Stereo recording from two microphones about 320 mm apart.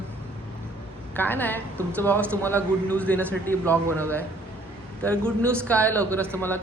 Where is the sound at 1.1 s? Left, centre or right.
Centre.